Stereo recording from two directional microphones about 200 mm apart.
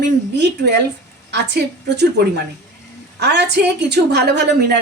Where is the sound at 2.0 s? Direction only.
55° right (ahead or behind).